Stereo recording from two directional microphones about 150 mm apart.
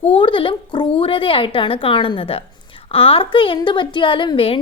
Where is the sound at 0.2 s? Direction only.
35° left (ahead or behind).